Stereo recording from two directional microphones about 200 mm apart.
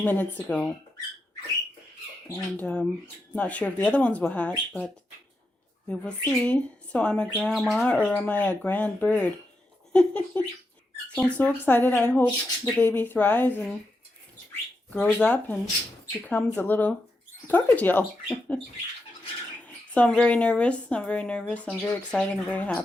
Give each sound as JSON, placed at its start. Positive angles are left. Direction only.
{"t": 0.0, "sound": "speech", "side_deg": 10}
{"t": 2.4, "sound": "speech", "side_deg": 5}
{"t": 5.9, "sound": "a woman's voice", "side_deg": 5}
{"t": 14.9, "sound": "a woman's voice", "side_deg": 10}
{"t": 19.6, "sound": "a woman's voice", "side_deg": 5}